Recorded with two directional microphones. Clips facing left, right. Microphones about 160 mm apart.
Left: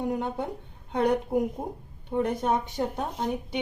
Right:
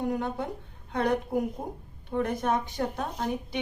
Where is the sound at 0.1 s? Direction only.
20° left (ahead or behind).